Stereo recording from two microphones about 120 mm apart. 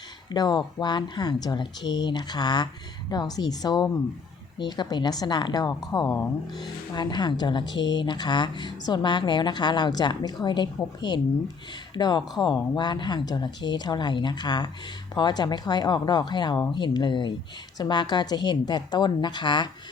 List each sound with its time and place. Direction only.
0.3 s a woman's voice: 35° left (ahead or behind)
6.6 s a woman's voice: 35° left (ahead or behind)
11.9 s a woman's voice: 35° left (ahead or behind)